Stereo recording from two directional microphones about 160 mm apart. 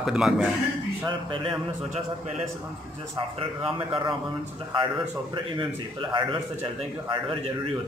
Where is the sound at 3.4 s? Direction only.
30° right (ahead or behind).